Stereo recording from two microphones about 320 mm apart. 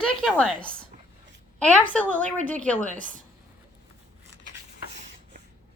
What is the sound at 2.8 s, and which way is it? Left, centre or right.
Speech, right.